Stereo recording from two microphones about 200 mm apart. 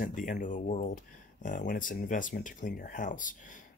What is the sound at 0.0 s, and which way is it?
Speech, 40° left (ahead or behind).